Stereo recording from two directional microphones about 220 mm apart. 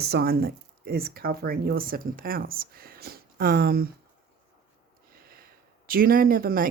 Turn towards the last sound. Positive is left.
turn(degrees=-40)  # may be behind; listen again after turning